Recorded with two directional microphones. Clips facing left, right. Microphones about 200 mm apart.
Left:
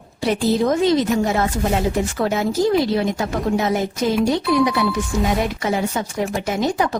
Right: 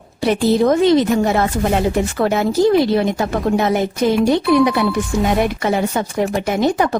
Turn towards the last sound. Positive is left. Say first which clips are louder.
# right 4 dB
turn(degrees=-60)  # may be behind; listen again after turning